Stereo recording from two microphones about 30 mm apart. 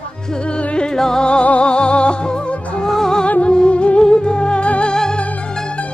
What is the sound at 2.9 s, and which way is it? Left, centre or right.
Music, centre.